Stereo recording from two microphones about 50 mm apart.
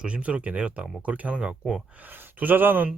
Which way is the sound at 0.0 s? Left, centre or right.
Right.